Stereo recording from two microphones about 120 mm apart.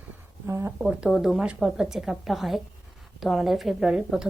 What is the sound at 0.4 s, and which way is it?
Speech, 25° right (ahead or behind).